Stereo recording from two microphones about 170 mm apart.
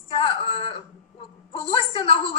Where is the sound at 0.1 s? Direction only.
30° left (ahead or behind).